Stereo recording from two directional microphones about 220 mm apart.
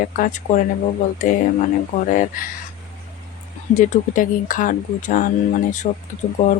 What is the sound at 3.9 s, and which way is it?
Speech, 35° left (ahead or behind).